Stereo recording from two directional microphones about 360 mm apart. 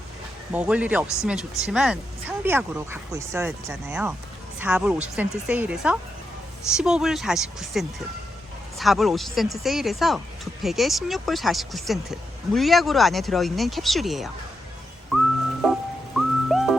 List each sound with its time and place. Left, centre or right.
0.5 s speech: centre
15.6 s music: centre